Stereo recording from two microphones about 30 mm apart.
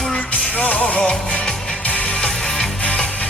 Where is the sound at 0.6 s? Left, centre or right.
Left.